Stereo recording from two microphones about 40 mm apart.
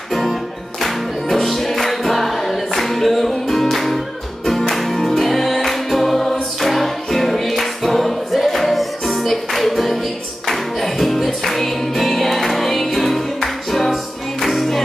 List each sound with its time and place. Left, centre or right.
0.1 s music: centre